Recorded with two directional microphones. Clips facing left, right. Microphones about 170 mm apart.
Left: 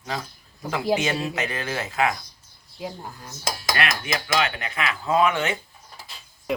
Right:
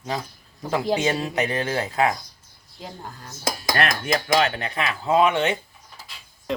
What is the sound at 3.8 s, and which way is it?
Speech, 40° right (ahead or behind).